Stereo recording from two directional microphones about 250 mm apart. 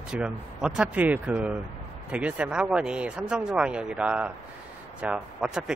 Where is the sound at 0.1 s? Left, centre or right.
Centre.